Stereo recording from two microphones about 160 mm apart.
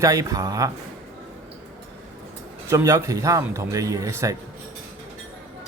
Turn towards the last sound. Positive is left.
turn(degrees=-20)  # may be behind; listen again after turning